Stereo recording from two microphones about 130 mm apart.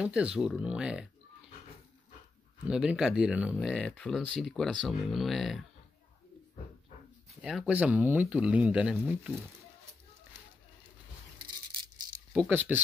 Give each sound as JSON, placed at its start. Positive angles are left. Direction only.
{"t": 0.0, "sound": "speech", "side_deg": -10}
{"t": 2.7, "sound": "speech", "side_deg": -5}
{"t": 3.7, "sound": "speech", "side_deg": 5}
{"t": 7.4, "sound": "speech", "side_deg": -5}
{"t": 11.3, "sound": "a sound", "side_deg": -35}
{"t": 12.3, "sound": "speech", "side_deg": -15}